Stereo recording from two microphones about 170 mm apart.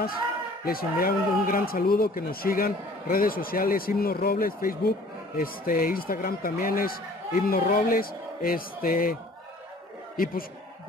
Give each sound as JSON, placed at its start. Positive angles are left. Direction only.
{"t": 0.7, "sound": "speech", "side_deg": 60}
{"t": 10.1, "sound": "a man's voice", "side_deg": 60}